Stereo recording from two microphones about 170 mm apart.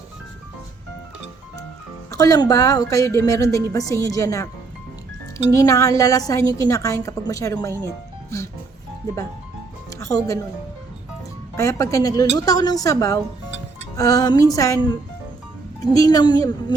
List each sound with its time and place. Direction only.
2.0 s speech: 20° left (ahead or behind)
5.5 s speech: 20° left (ahead or behind)
10.0 s speech: 20° left (ahead or behind)
11.5 s speech: 15° left (ahead or behind)
15.8 s speech: 20° left (ahead or behind)